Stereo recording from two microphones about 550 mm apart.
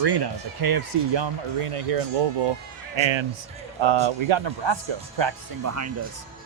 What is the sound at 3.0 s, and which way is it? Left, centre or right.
Speech, right.